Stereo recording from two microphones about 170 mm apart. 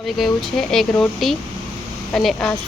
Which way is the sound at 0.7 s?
5° left (ahead or behind).